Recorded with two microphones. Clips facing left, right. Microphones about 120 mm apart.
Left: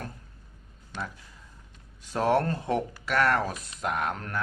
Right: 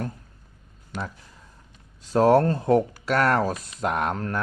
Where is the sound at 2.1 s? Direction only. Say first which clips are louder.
Right 7 dB; 40° right (ahead or behind).